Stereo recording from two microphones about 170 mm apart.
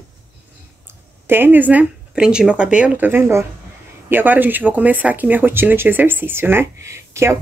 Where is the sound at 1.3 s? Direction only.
10° right (ahead or behind).